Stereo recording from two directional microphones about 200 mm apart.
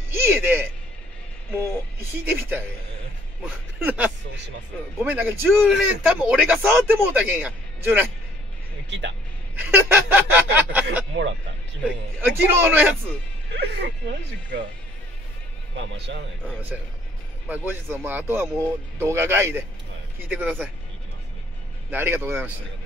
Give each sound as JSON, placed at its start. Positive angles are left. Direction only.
{"t": 0.1, "sound": "speech", "side_deg": -10}
{"t": 2.0, "sound": "a man's voice", "side_deg": -10}
{"t": 3.8, "sound": "a man's voice", "side_deg": -5}
{"t": 9.6, "sound": "a man's voice", "side_deg": -10}
{"t": 12.2, "sound": "a man's voice", "side_deg": -10}
{"t": 13.5, "sound": "speech", "side_deg": -55}
{"t": 15.7, "sound": "speech", "side_deg": -60}
{"t": 17.5, "sound": "a man's voice", "side_deg": -10}
{"t": 21.9, "sound": "a man's voice", "side_deg": -10}